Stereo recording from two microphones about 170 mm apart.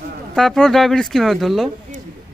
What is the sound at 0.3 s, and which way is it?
Speech, 5° left (ahead or behind).